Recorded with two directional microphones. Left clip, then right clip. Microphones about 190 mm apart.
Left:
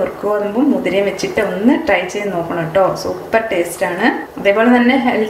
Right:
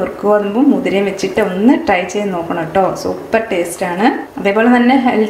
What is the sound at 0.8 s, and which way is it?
A woman's voice, 15° right (ahead or behind).